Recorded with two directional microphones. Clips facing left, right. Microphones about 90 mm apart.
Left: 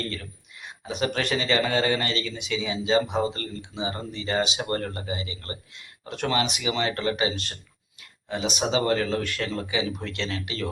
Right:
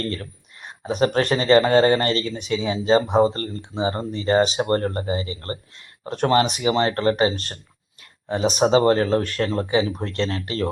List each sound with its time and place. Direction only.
0.1 s speech: 40° right (ahead or behind)